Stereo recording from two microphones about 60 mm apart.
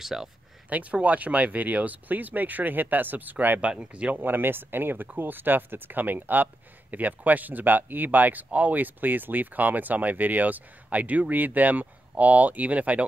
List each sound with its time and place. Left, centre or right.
0.0 s speech: centre
0.7 s speech: right
4.2 s speech: right